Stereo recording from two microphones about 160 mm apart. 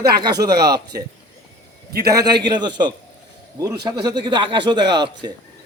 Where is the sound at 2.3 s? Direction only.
25° right (ahead or behind).